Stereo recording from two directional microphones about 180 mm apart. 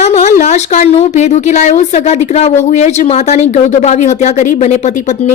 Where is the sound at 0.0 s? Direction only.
40° left (ahead or behind).